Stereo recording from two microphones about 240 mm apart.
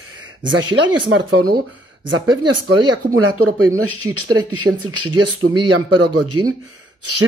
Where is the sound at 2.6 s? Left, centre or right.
Right.